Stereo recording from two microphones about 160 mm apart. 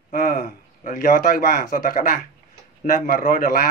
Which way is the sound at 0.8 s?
55° left (ahead or behind).